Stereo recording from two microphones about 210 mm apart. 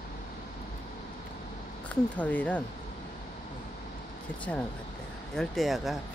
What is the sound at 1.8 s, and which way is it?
Speech, 5° left (ahead or behind).